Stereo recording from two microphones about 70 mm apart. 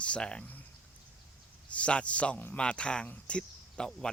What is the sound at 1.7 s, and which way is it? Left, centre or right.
Speech, centre.